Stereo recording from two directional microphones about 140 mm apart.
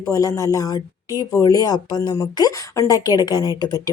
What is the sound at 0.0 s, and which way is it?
Speech, 25° left (ahead or behind).